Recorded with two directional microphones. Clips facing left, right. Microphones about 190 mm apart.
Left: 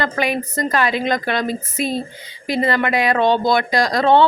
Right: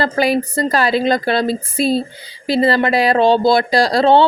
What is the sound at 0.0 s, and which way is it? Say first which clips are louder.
A woman's voice: right 5 dB; 35° right (ahead or behind).